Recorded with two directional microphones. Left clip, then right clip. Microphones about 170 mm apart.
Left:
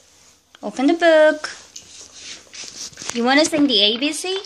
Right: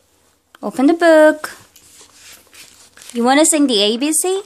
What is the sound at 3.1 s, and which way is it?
Speech, 30° right (ahead or behind).